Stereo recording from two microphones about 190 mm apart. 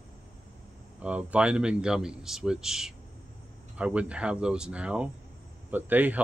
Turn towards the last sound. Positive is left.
turn(degrees=-10)  # may be behind; listen again after turning